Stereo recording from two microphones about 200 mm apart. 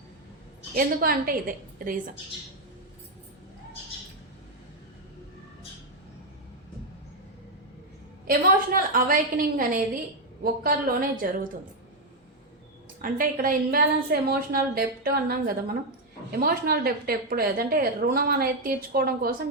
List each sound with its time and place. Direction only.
0.8 s a woman's voice: 45° right (ahead or behind)
8.3 s a woman's voice: 45° right (ahead or behind)
13.0 s a woman's voice: 45° right (ahead or behind)